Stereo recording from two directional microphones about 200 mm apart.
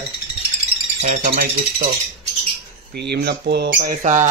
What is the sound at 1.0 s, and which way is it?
Speech, 40° right (ahead or behind).